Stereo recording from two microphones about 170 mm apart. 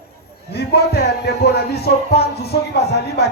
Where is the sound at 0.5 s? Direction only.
70° left (ahead or behind).